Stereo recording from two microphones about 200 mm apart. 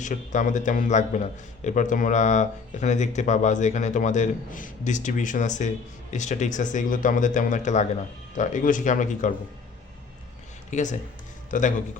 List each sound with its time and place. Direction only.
0.0 s a man's voice: 40° left (ahead or behind)
10.7 s a man's voice: 35° left (ahead or behind)